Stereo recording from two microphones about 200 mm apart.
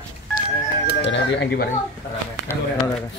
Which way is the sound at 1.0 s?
60° left (ahead or behind).